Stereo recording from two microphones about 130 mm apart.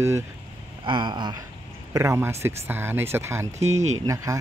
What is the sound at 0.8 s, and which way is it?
Speech, 35° right (ahead or behind).